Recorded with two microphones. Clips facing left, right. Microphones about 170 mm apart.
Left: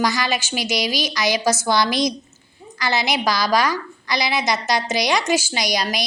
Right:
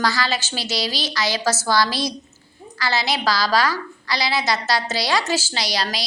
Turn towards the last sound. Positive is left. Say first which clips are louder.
# left 3 dB
turn(degrees=15)  # may be behind; listen again after turning